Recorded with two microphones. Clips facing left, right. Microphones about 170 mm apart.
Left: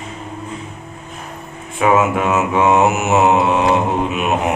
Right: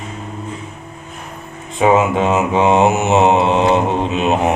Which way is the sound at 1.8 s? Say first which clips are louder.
Right 2 dB; 20° right (ahead or behind).